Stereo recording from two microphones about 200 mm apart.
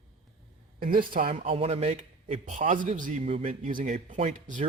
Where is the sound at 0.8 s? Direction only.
45° right (ahead or behind).